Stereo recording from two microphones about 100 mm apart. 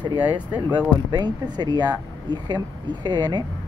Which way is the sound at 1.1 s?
45° right (ahead or behind).